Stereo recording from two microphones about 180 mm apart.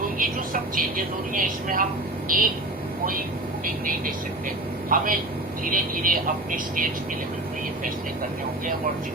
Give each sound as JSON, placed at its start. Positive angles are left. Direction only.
{"t": 0.2, "sound": "a woman's voice", "side_deg": -50}
{"t": 4.9, "sound": "a woman's voice", "side_deg": -50}